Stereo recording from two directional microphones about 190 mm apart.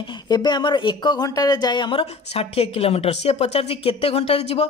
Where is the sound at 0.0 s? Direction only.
25° left (ahead or behind).